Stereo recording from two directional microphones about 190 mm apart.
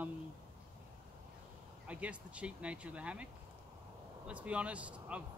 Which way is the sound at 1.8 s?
5° right (ahead or behind).